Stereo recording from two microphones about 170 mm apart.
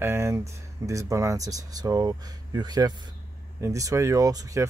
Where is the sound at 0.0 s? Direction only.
15° right (ahead or behind).